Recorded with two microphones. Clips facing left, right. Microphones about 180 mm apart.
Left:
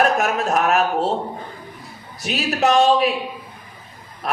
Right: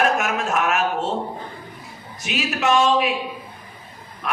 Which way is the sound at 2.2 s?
35° left (ahead or behind).